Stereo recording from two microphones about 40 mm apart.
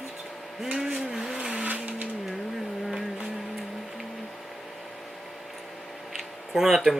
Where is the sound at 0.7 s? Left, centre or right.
Centre.